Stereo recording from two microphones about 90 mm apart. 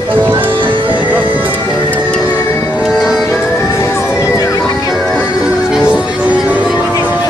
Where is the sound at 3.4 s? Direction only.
30° left (ahead or behind).